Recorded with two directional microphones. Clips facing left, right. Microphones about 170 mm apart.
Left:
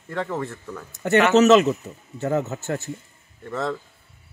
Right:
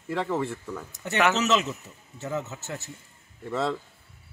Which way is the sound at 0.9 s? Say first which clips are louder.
Left 8 dB; 55° left (ahead or behind).